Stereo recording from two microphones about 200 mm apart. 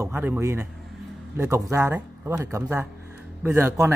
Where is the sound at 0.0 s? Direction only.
10° right (ahead or behind).